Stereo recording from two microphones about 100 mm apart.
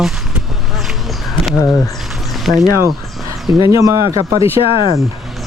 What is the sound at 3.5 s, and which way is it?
Speech, 50° left (ahead or behind).